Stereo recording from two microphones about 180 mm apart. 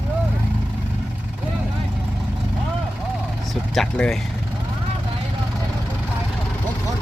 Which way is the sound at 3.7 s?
Centre (ahead or behind).